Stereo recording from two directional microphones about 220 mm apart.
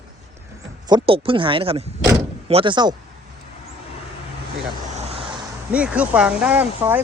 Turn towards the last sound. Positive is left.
turn(degrees=-10)  # may be behind; listen again after turning